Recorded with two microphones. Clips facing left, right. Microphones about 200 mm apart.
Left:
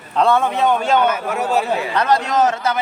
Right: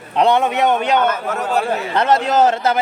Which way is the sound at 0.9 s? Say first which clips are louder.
Even; 10° left (ahead or behind).